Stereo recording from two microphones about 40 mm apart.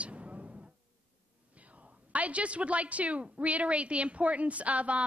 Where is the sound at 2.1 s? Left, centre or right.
Right.